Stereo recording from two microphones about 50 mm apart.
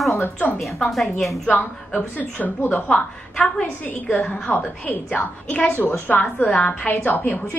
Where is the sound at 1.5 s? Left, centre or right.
Left.